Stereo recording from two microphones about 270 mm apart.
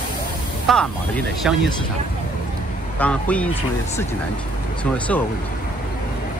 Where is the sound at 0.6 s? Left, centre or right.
Centre.